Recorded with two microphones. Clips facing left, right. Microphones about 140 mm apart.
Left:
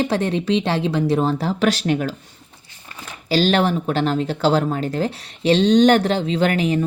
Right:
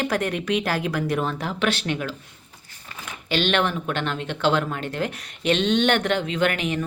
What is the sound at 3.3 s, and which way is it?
Speech, 35° left (ahead or behind).